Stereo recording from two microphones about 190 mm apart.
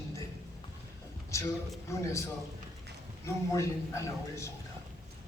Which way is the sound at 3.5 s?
15° left (ahead or behind).